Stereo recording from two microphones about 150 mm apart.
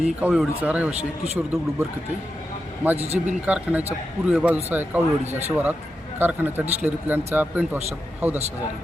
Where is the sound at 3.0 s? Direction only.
45° right (ahead or behind).